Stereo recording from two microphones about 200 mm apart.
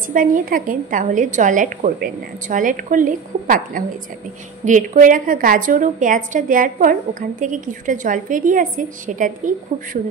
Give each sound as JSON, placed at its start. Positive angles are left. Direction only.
{"t": 0.1, "sound": "a woman's voice", "side_deg": -45}